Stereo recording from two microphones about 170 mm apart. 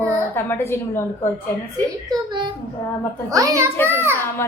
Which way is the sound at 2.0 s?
25° right (ahead or behind).